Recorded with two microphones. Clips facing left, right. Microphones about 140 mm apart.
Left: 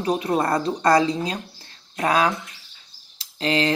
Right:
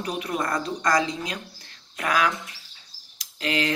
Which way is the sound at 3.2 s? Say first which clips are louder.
Left 4 dB; 30° left (ahead or behind).